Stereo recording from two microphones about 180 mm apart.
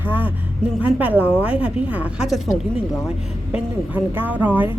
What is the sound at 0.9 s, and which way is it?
A woman's voice, 10° right (ahead or behind).